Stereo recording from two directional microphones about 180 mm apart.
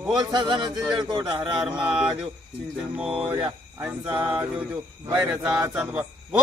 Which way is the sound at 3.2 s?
15° right (ahead or behind).